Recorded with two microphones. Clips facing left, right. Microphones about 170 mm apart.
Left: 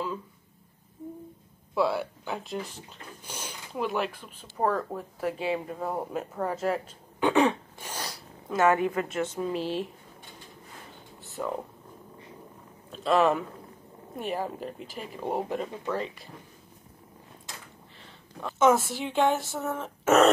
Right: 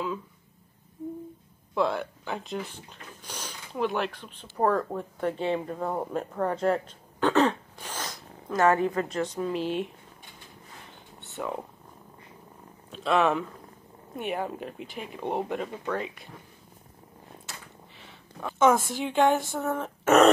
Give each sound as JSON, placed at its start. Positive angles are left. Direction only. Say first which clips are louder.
{"t": 1.8, "sound": "speech", "louder": "even", "side_deg": 5}
{"t": 8.7, "sound": "a woman's voice", "louder": "right 1 dB", "side_deg": 15}
{"t": 9.1, "sound": "speech", "louder": "right 1 dB", "side_deg": 5}
{"t": 9.6, "sound": "speech", "louder": "right 2 dB", "side_deg": 35}
{"t": 11.1, "sound": "a sound", "louder": "left 1 dB", "side_deg": 0}
{"t": 12.9, "sound": "speech", "louder": "left 1 dB", "side_deg": 0}
{"t": 18.6, "sound": "speech", "louder": "even", "side_deg": 5}